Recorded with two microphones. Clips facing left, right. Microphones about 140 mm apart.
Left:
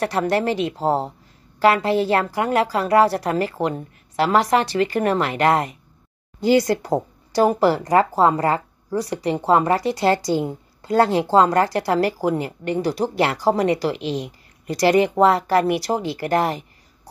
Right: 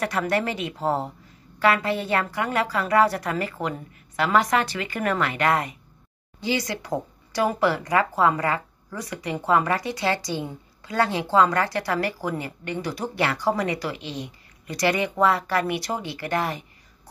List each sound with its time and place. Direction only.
0.0 s speech: 30° left (ahead or behind)
10.8 s a sound: 40° left (ahead or behind)
11.1 s speech: 35° left (ahead or behind)